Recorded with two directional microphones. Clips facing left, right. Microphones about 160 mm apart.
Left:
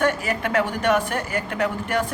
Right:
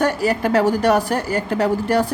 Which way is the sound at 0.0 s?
35° right (ahead or behind).